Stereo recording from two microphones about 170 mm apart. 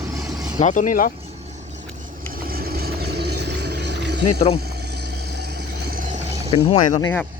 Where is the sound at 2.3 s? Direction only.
60° right (ahead or behind); by 4.2 s 90° right.